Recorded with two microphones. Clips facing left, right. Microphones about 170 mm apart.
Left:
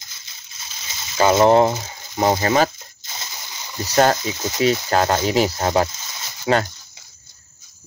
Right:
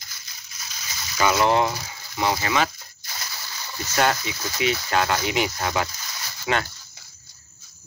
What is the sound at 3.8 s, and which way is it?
Speech, 35° left (ahead or behind).